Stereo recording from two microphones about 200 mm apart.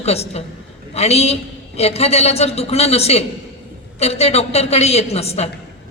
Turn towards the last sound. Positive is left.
turn(degrees=30)  # may be behind; listen again after turning